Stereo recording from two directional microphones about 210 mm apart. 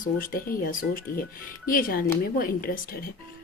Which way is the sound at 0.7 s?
40° left (ahead or behind).